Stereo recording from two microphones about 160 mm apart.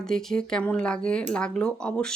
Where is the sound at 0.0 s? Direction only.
5° left (ahead or behind).